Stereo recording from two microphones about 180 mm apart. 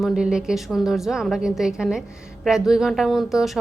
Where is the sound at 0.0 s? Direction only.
5° right (ahead or behind).